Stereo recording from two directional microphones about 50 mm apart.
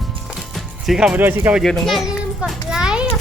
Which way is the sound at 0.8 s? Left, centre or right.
Centre.